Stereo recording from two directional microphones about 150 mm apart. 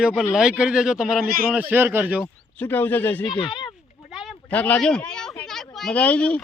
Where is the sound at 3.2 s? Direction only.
30° left (ahead or behind).